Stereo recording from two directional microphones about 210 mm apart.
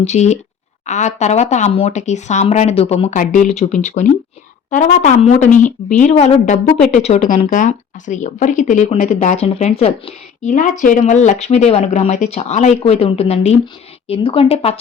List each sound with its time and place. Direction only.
0.0 s speech: 30° left (ahead or behind)